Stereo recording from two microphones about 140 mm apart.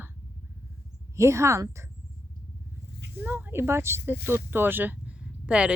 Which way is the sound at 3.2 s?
15° right (ahead or behind).